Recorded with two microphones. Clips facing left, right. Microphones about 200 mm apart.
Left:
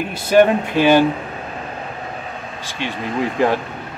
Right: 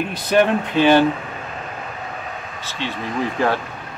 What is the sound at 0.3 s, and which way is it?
Speech, 10° left (ahead or behind).